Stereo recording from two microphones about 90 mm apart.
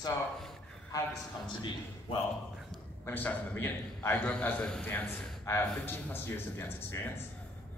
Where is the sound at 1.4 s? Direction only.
60° left (ahead or behind).